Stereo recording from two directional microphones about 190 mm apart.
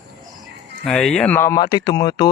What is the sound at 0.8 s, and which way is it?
Speech, centre (ahead or behind).